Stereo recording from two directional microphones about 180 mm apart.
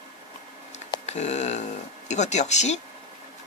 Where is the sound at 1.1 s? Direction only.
40° left (ahead or behind).